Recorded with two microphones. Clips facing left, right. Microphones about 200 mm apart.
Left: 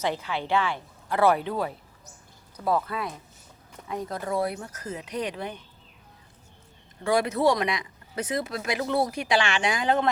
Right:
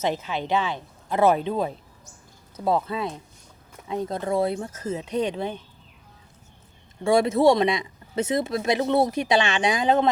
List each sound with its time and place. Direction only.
0.0 s speech: 20° right (ahead or behind)
7.0 s speech: 25° right (ahead or behind)